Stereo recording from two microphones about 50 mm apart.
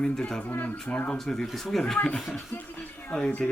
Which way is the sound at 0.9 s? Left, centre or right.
Left.